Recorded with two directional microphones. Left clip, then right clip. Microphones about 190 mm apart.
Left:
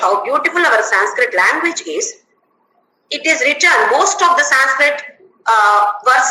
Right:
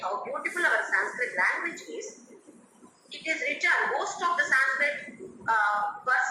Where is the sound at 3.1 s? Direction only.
60° left (ahead or behind).